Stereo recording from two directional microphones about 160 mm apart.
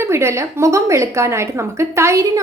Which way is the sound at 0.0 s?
15° right (ahead or behind).